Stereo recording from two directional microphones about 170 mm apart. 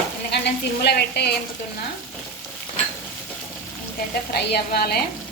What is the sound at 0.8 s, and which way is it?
Speech, 75° left (ahead or behind).